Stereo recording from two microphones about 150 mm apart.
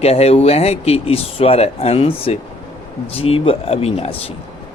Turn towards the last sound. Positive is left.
turn(degrees=40)  # may be behind; listen again after turning